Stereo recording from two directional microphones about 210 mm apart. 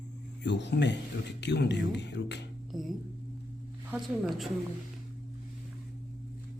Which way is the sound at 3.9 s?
Centre (ahead or behind).